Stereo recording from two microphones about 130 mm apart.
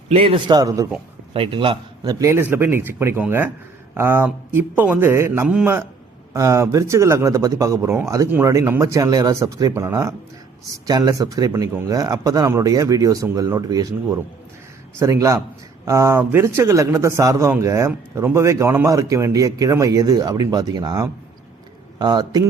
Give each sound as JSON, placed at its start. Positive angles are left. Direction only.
{"t": 0.1, "sound": "a man's voice", "side_deg": -45}
{"t": 1.3, "sound": "a man's voice", "side_deg": -40}
{"t": 2.0, "sound": "a man's voice", "side_deg": -25}
{"t": 14.9, "sound": "a man's voice", "side_deg": -25}